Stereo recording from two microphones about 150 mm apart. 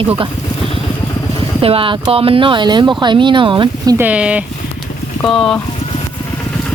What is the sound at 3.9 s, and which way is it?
Speech, 10° right (ahead or behind).